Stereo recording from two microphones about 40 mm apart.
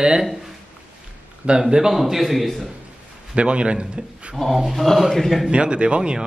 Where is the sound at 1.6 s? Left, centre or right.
Centre.